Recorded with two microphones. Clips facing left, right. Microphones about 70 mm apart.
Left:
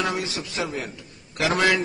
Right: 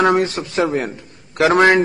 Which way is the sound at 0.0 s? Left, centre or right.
Right.